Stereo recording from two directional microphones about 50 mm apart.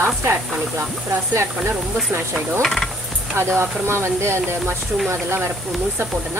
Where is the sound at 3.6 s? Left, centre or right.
Right.